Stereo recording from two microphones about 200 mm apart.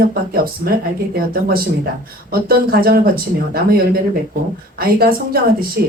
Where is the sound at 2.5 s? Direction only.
50° right (ahead or behind).